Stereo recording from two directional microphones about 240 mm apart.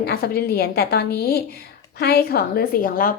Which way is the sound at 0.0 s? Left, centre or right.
Left.